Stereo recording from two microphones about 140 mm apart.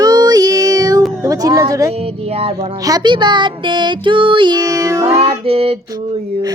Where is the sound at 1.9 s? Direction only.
45° right (ahead or behind).